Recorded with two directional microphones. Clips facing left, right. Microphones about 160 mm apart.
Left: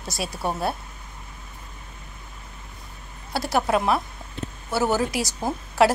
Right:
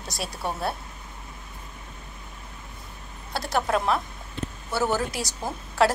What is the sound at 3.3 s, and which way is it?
Speech, 5° left (ahead or behind).